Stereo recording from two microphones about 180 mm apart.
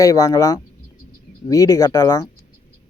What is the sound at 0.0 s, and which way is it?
Speech, 20° left (ahead or behind).